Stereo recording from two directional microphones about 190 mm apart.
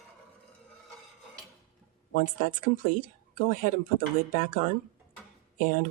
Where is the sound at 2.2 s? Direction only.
45° left (ahead or behind).